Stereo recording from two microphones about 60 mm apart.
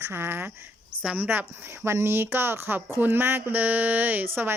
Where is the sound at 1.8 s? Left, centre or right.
Right.